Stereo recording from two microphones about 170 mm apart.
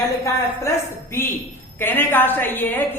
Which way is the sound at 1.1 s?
15° left (ahead or behind).